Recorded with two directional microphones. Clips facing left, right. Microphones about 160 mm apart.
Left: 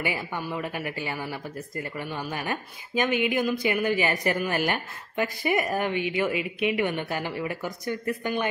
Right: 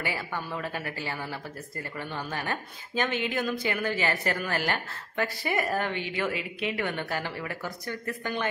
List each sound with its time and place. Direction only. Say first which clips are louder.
0.0 s speech: left 3 dB; 15° left (ahead or behind)